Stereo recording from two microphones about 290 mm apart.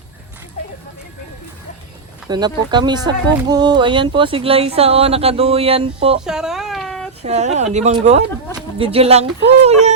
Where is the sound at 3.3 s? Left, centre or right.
Centre.